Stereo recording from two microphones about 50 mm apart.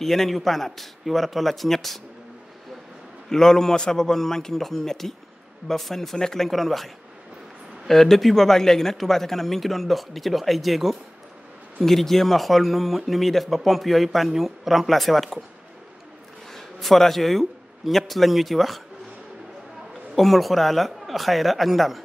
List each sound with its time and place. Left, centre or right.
0.0 s speech: centre
3.3 s a man's voice: centre
7.9 s speech: centre
16.5 s a man's voice: centre
20.2 s speech: centre